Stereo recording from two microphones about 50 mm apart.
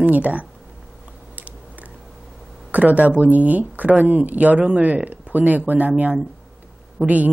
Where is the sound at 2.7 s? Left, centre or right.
Right.